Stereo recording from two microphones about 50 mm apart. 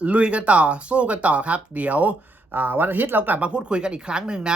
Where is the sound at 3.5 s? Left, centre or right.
Centre.